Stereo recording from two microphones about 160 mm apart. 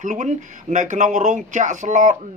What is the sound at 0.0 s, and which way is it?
Speech, 50° right (ahead or behind).